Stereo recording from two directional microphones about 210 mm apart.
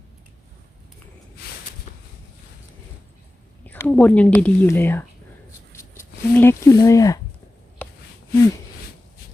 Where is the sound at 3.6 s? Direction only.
10° left (ahead or behind).